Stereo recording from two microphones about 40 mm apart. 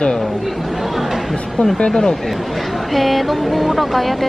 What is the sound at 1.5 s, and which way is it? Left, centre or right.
Speech, centre.